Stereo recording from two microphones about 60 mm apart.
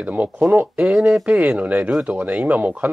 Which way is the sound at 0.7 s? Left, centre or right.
Centre.